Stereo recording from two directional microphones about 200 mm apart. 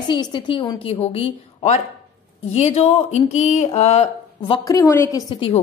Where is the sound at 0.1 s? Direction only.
25° left (ahead or behind).